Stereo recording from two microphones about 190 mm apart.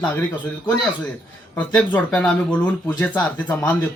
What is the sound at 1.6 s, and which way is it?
A man's voice, 10° left (ahead or behind).